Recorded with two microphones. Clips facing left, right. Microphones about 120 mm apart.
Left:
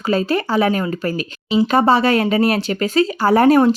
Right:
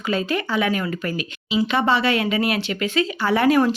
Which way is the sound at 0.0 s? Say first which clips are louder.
Left 5 dB; 35° left (ahead or behind).